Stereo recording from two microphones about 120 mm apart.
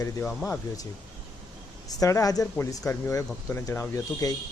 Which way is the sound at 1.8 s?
30° left (ahead or behind).